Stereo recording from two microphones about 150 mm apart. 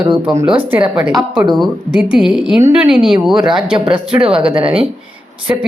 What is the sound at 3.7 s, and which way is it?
Speech, 35° right (ahead or behind).